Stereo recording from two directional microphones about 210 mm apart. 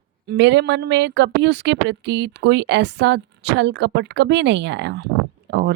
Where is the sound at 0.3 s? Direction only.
55° right (ahead or behind).